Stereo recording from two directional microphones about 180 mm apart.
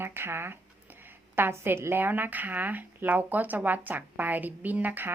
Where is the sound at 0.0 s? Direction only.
10° right (ahead or behind).